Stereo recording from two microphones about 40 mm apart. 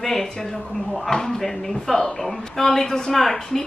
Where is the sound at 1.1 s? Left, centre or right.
Centre.